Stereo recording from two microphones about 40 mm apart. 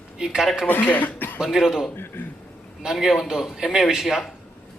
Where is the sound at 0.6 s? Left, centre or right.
Left.